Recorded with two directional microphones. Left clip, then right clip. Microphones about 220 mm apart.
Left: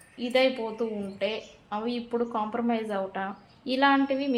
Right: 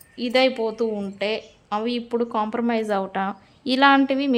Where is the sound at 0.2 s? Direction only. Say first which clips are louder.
Right 5 dB; 45° right (ahead or behind).